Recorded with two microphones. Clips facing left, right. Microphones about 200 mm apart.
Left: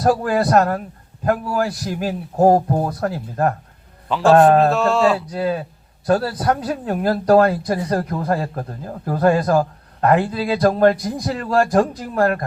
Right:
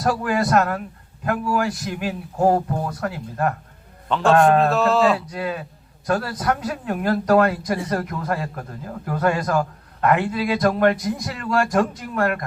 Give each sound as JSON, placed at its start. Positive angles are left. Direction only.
{"t": 0.0, "sound": "speech", "side_deg": 35}
{"t": 4.7, "sound": "speech", "side_deg": 0}
{"t": 5.3, "sound": "speech", "side_deg": 35}